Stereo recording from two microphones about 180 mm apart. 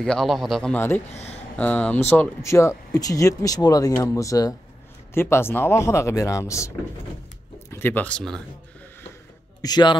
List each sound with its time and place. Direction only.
0.0 s a man's voice: 5° left (ahead or behind)
7.7 s speech: 10° left (ahead or behind)
9.6 s a man's voice: 25° left (ahead or behind)